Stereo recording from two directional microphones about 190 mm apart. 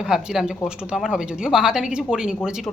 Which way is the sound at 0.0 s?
5° right (ahead or behind).